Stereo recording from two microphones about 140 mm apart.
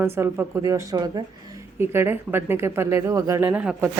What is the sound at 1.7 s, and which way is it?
A woman's voice, 15° right (ahead or behind).